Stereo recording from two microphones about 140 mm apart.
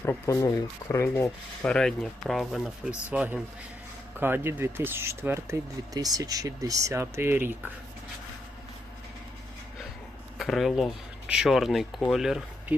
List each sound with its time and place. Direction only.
0.0 s speech: 20° left (ahead or behind)
1.6 s speech: 5° left (ahead or behind)
3.1 s speech: 10° right (ahead or behind)
10.3 s speech: centre (ahead or behind)